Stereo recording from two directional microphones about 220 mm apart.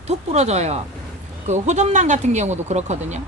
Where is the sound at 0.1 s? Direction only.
30° right (ahead or behind).